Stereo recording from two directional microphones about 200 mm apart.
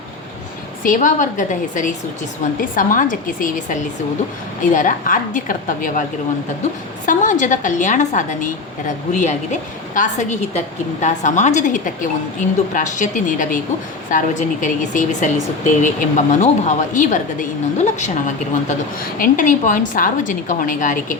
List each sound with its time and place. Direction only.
0.9 s a woman's voice: 40° left (ahead or behind)